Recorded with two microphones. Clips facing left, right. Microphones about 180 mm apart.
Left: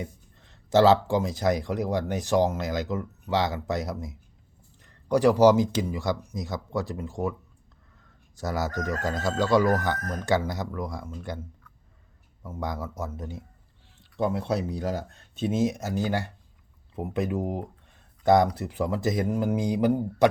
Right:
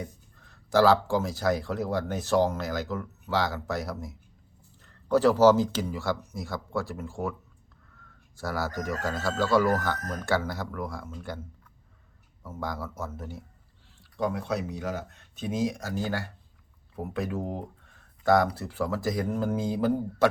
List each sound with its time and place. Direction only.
0.0 s speech: 20° left (ahead or behind)
8.4 s speech: 20° left (ahead or behind)
12.5 s speech: 15° left (ahead or behind)